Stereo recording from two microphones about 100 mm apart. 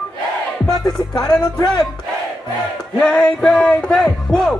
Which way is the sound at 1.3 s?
40° left (ahead or behind).